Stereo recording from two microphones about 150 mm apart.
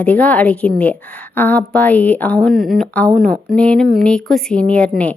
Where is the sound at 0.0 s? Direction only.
10° left (ahead or behind).